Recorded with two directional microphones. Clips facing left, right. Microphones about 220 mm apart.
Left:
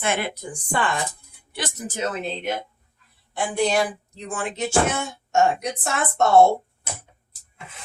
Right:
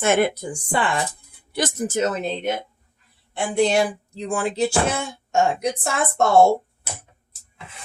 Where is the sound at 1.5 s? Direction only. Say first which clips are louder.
Right 7 dB; 45° right (ahead or behind).